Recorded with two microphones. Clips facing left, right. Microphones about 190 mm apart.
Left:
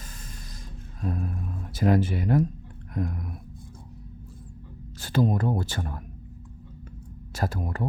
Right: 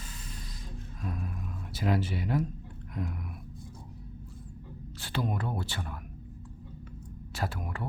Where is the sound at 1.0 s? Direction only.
40° left (ahead or behind).